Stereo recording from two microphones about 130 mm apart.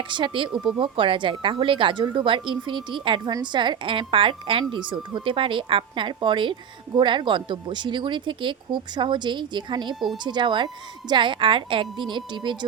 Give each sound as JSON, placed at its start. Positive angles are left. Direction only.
{"t": 0.1, "sound": "a woman's voice", "side_deg": -40}
{"t": 9.9, "sound": "speech", "side_deg": 0}
{"t": 10.2, "sound": "a woman's voice", "side_deg": -35}